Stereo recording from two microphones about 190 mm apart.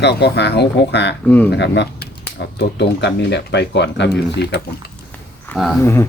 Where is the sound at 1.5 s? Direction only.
65° left (ahead or behind).